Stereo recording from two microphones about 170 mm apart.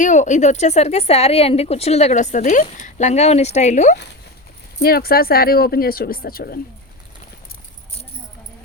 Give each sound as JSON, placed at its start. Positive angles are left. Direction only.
{"t": 0.0, "sound": "speech", "side_deg": 45}
{"t": 4.8, "sound": "speech", "side_deg": 65}